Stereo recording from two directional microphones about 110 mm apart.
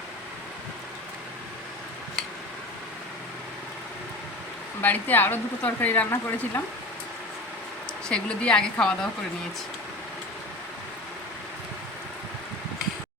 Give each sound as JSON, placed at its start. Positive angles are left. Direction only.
{"t": 4.8, "sound": "speech", "side_deg": 15}
{"t": 8.0, "sound": "speech", "side_deg": 10}